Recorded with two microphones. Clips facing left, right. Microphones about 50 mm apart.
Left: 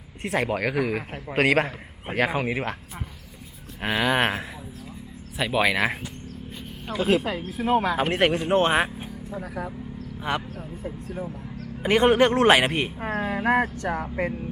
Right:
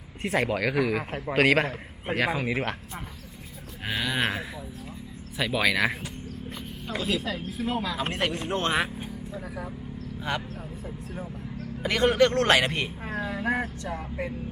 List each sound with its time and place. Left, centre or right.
0.3 s speech: left
0.9 s a man's voice: right
2.1 s speech: left
3.8 s speech: left
5.4 s speech: centre
7.0 s speech: left
8.4 s speech: left
9.4 s speech: left
10.2 s speech: left
11.8 s a man's voice: left
13.0 s speech: left